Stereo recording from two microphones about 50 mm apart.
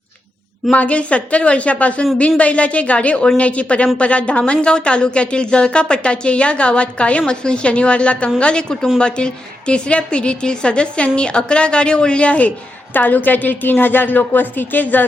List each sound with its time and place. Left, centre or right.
0.7 s speech: left
12.9 s a woman's voice: left